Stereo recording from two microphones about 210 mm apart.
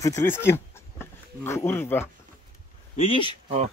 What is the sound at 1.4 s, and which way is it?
Speech, 10° left (ahead or behind).